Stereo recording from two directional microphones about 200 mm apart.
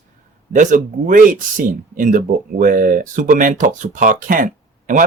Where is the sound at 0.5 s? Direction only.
40° right (ahead or behind).